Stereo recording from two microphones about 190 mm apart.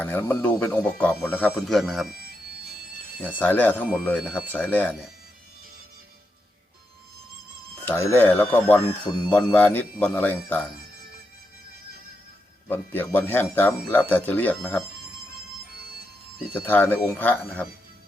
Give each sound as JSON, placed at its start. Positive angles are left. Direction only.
{"t": 0.0, "sound": "speech", "side_deg": 10}
{"t": 3.2, "sound": "speech", "side_deg": 10}
{"t": 4.2, "sound": "speech", "side_deg": -5}
{"t": 4.5, "sound": "speech", "side_deg": 10}
{"t": 7.9, "sound": "speech", "side_deg": 10}
{"t": 9.0, "sound": "a man's voice", "side_deg": 20}
{"t": 9.3, "sound": "speech", "side_deg": 10}
{"t": 12.6, "sound": "speech", "side_deg": 10}
{"t": 16.6, "sound": "speech", "side_deg": 10}